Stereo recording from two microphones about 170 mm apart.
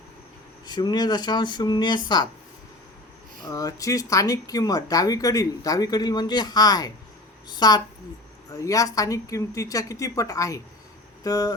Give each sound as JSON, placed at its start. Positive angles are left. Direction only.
{"t": 0.6, "sound": "speech", "side_deg": 25}
{"t": 3.4, "sound": "speech", "side_deg": 20}